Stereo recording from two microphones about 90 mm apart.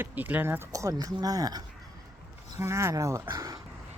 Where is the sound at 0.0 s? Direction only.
20° right (ahead or behind); by 1.6 s 45° right (ahead or behind).